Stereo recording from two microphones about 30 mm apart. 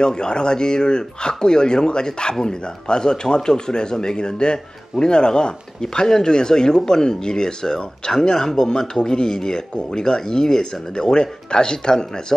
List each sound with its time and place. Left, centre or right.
0.0 s speech: left